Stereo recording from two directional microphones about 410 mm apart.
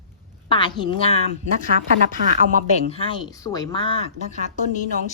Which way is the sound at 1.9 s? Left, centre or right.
Centre.